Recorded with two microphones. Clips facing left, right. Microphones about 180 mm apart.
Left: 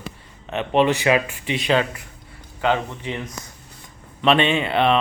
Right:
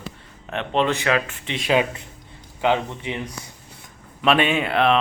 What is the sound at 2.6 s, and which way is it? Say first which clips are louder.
Speech: even; 15° right (ahead or behind).